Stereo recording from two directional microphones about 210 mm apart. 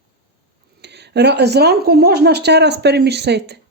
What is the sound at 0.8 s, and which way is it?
Speech, 55° right (ahead or behind).